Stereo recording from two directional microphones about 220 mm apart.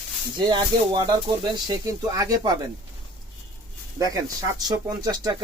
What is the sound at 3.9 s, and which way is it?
Speech, 15° right (ahead or behind).